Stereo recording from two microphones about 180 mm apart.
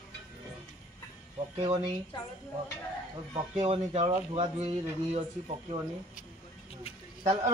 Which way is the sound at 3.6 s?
30° right (ahead or behind).